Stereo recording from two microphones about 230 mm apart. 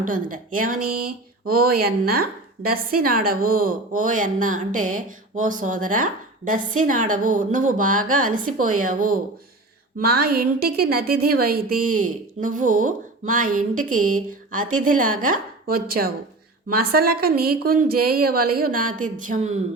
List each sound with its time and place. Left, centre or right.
0.0 s a woman's voice: right